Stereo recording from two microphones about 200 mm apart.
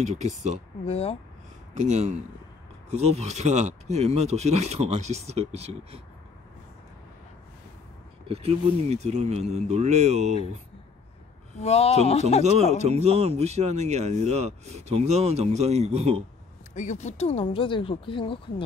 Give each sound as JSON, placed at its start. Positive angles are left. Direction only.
{"t": 0.0, "sound": "speech", "side_deg": -35}
{"t": 0.8, "sound": "speech", "side_deg": 30}
{"t": 1.7, "sound": "speech", "side_deg": -35}
{"t": 8.3, "sound": "speech", "side_deg": -30}
{"t": 11.6, "sound": "speech", "side_deg": 30}
{"t": 12.8, "sound": "speech", "side_deg": -30}
{"t": 16.7, "sound": "speech", "side_deg": 35}